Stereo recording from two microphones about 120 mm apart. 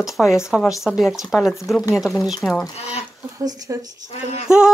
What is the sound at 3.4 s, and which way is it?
Speech, 30° right (ahead or behind).